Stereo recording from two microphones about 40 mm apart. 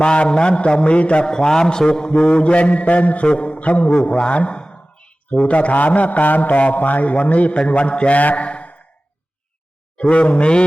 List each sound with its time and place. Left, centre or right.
0.0 s a man's voice: left
3.5 s a sound: left
4.2 s a man's voice: left
8.2 s speech: left
8.4 s a sound: left
10.0 s mantra: left